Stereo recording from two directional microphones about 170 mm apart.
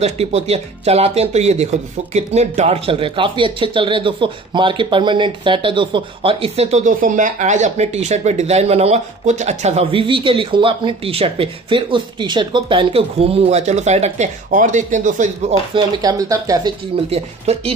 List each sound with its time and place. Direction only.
0.0 s speech: 35° right (ahead or behind)
15.7 s speech: 20° right (ahead or behind)
17.1 s speech: 35° right (ahead or behind)